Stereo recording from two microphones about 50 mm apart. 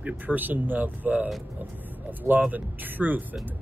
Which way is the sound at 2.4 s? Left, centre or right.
Right.